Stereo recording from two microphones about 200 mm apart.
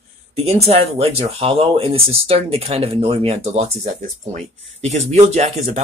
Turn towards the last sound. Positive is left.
turn(degrees=-35)  # may be behind; listen again after turning